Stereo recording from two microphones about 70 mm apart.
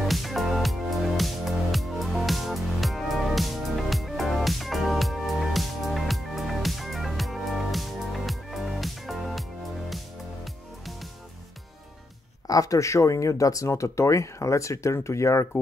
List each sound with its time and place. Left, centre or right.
0.0 s music: centre
12.4 s speech: left